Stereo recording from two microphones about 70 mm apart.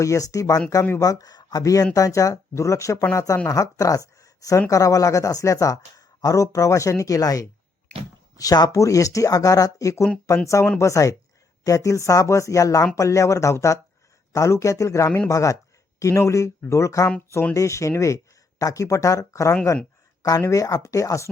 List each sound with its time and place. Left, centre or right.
0.0 s speech: left
1.6 s speech: left
3.4 s speech: left